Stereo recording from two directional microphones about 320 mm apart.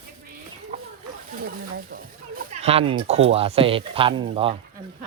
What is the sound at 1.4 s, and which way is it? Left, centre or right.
Speech, right.